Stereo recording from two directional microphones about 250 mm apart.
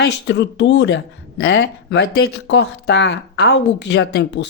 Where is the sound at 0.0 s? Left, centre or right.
Left.